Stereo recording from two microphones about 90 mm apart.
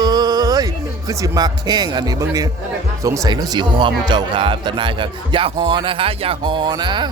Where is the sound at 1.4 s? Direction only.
50° right (ahead or behind).